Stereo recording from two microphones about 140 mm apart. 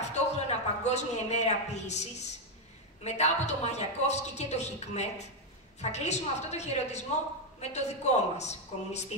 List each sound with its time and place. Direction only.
0.1 s a man's voice: 55° left (ahead or behind)